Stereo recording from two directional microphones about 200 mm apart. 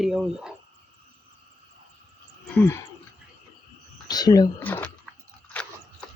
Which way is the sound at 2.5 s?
10° left (ahead or behind).